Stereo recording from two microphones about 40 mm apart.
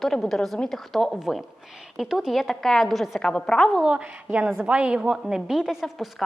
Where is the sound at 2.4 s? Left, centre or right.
Centre.